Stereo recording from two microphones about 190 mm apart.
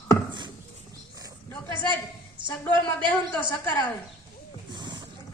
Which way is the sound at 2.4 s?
25° right (ahead or behind).